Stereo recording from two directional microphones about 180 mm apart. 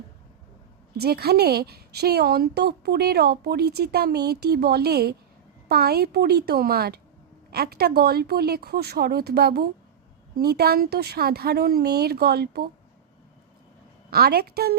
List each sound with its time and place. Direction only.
0.9 s a woman's voice: 60° right (ahead or behind)
14.1 s a woman's voice: 60° right (ahead or behind)